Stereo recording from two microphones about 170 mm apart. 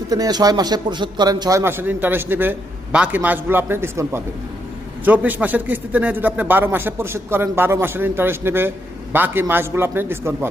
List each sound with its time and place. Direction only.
0.1 s a man's voice: 20° right (ahead or behind)